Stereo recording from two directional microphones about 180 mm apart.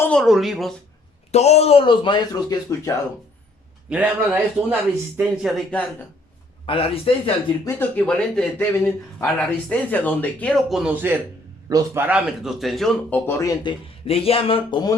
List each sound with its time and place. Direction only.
0.0 s speech: 5° left (ahead or behind)
1.3 s a man's voice: 35° left (ahead or behind); by 2.9 s 20° left (ahead or behind)
3.8 s speech: 5° right (ahead or behind)
6.7 s speech: 30° left (ahead or behind)
7.6 s speech: 10° left (ahead or behind)
14.1 s speech: 30° left (ahead or behind)